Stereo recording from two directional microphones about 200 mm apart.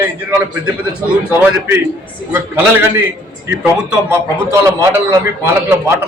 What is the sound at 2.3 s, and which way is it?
Speech, 10° right (ahead or behind).